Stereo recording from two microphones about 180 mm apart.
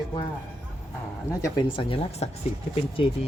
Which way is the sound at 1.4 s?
25° left (ahead or behind).